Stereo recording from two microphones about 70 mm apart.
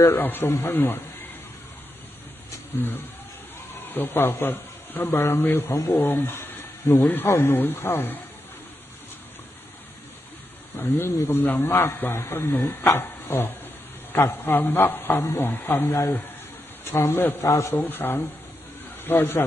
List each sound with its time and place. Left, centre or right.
0.2 s speech: left
3.8 s a man's voice: left
5.7 s speech: left
5.9 s speech: left
10.8 s speech: left
12.1 s speech: left
16.8 s speech: left
17.5 s a man's voice: left
17.7 s speech: left